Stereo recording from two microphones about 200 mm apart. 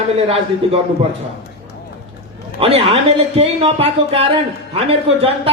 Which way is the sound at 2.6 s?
30° right (ahead or behind).